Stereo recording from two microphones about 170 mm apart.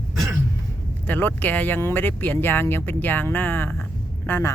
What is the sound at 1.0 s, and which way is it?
Speech, 10° left (ahead or behind).